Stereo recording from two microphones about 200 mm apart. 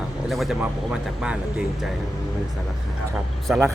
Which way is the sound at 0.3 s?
Centre (ahead or behind).